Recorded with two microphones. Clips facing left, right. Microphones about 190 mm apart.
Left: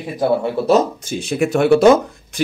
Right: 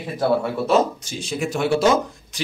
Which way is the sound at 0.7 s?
40° left (ahead or behind).